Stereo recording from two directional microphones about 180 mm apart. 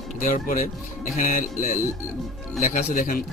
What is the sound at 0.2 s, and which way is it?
Speech, 45° left (ahead or behind).